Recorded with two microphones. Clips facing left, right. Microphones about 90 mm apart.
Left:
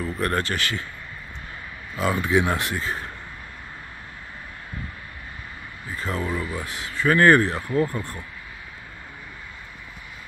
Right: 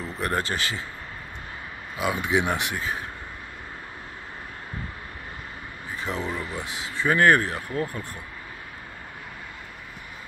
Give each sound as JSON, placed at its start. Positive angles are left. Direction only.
{"t": 0.2, "sound": "speech", "side_deg": -20}
{"t": 2.0, "sound": "speech", "side_deg": -10}
{"t": 2.7, "sound": "a man's voice", "side_deg": -5}
{"t": 5.9, "sound": "a sound", "side_deg": -15}
{"t": 6.2, "sound": "speech", "side_deg": 5}
{"t": 7.1, "sound": "speech", "side_deg": -10}
{"t": 7.7, "sound": "speech", "side_deg": 15}